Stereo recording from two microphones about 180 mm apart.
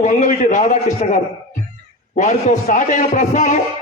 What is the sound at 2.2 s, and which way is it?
A man's voice, 40° left (ahead or behind).